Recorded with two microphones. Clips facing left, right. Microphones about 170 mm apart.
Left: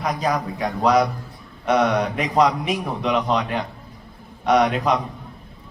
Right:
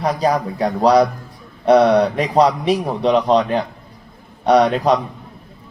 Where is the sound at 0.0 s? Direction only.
35° right (ahead or behind).